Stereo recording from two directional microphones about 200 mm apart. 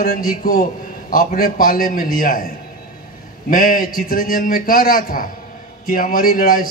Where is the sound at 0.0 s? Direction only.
45° left (ahead or behind).